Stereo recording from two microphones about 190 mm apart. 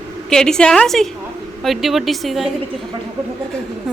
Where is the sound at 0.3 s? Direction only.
5° left (ahead or behind).